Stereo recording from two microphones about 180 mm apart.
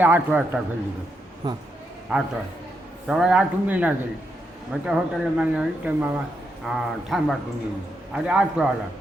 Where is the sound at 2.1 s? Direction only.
5° right (ahead or behind).